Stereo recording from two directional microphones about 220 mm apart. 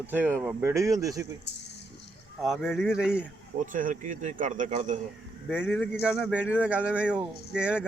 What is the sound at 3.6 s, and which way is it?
Speech, 35° right (ahead or behind).